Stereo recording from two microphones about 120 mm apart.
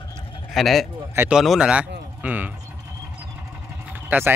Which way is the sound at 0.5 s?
Centre (ahead or behind).